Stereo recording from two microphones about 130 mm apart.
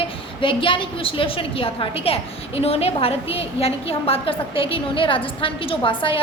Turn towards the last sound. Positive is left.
turn(degrees=40)  # may be behind; listen again after turning